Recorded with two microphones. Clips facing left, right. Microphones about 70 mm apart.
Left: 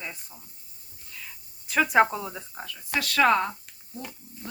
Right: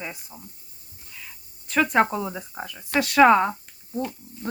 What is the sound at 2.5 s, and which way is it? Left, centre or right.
Speech, right.